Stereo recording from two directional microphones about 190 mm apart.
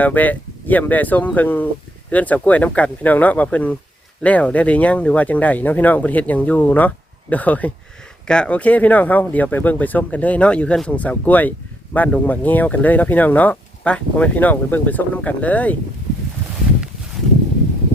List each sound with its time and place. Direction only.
0.0 s speech: 10° left (ahead or behind)